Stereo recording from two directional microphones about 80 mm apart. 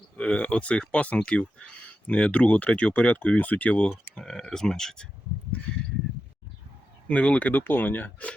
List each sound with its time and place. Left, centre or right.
0.2 s speech: centre
7.1 s speech: centre